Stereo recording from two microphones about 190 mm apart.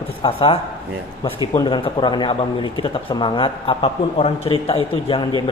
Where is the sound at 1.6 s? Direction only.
25° left (ahead or behind).